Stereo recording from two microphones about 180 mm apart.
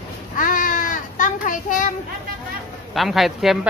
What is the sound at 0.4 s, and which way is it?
Child singing, 50° left (ahead or behind).